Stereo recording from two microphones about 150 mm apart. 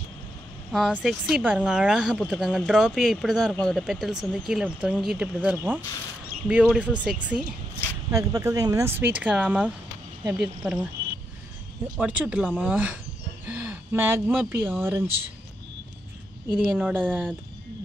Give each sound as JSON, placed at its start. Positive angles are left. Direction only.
{"t": 0.7, "sound": "speech", "side_deg": -5}
{"t": 8.1, "sound": "speech", "side_deg": -20}
{"t": 12.0, "sound": "speech", "side_deg": -10}
{"t": 16.4, "sound": "speech", "side_deg": -5}